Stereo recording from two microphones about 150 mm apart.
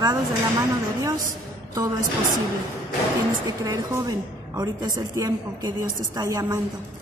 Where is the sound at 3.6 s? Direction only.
20° right (ahead or behind).